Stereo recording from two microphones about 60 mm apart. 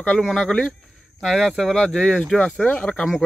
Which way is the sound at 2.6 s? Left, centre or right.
Centre.